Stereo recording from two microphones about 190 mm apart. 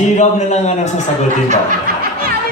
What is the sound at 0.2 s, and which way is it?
Speech, 35° left (ahead or behind).